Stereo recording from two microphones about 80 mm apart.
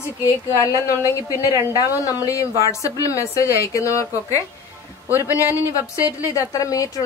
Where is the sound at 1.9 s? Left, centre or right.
Left.